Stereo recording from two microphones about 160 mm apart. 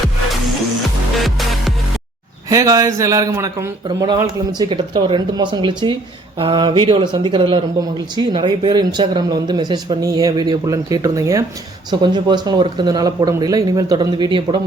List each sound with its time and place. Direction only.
1.2 s music: centre (ahead or behind)
2.5 s speech: 20° right (ahead or behind)